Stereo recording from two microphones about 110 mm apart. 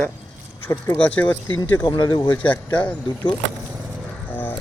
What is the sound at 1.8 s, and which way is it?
Speech, 40° left (ahead or behind).